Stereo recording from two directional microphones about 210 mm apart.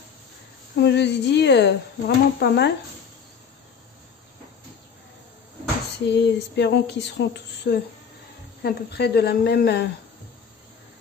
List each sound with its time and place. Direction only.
0.7 s speech: 55° left (ahead or behind)
6.0 s speech: 55° left (ahead or behind)